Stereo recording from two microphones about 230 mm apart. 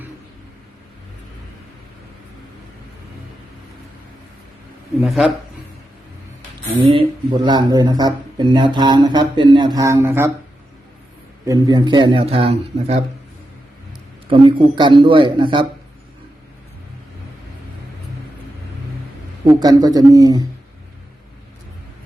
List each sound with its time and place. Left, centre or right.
5.0 s speech: centre
6.9 s speech: centre
11.4 s speech: centre
14.3 s speech: right
19.5 s a man's voice: centre